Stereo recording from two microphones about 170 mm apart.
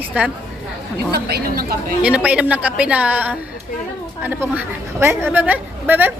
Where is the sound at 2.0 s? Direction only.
5° right (ahead or behind).